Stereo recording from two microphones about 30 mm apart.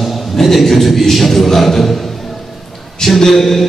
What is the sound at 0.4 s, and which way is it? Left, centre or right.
A man's voice, centre.